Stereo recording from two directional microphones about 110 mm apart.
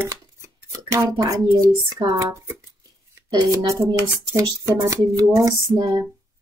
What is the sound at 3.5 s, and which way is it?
Speech, 25° right (ahead or behind).